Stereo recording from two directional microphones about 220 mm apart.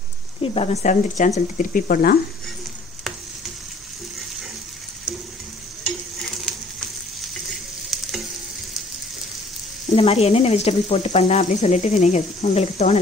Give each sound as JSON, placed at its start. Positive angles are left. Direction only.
{"t": 0.4, "sound": "speech", "side_deg": 30}
{"t": 7.9, "sound": "frying", "side_deg": 0}
{"t": 9.8, "sound": "speech", "side_deg": 30}